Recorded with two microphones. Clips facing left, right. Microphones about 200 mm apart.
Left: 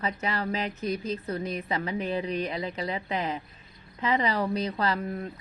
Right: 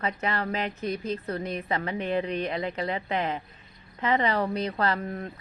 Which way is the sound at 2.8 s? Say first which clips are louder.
Right 1 dB; 30° right (ahead or behind).